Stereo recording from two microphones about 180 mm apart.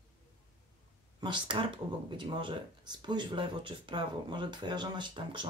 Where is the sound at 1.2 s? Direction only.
25° right (ahead or behind).